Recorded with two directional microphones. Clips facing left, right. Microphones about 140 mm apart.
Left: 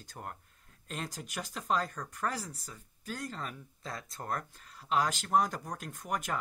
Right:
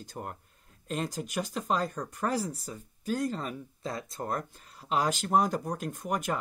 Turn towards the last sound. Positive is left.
turn(degrees=-5)  # may be behind; listen again after turning